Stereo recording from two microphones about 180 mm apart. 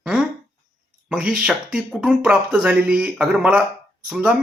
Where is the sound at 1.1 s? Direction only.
5° right (ahead or behind).